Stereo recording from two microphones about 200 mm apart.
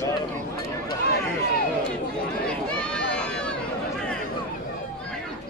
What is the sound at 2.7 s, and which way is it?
Run, 5° left (ahead or behind).